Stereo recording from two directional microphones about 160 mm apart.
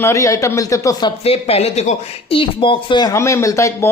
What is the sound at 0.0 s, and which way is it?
Speech, 20° left (ahead or behind).